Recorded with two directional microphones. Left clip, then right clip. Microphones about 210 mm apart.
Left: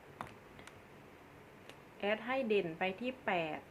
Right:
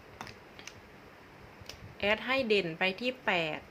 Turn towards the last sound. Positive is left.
turn(degrees=-15)  # may be behind; listen again after turning